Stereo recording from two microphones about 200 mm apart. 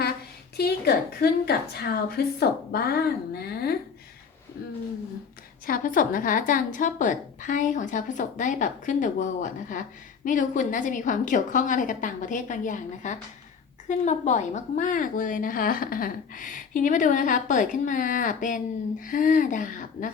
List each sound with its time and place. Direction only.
0.5 s a woman's voice: 50° left (ahead or behind)
5.6 s speech: 45° left (ahead or behind)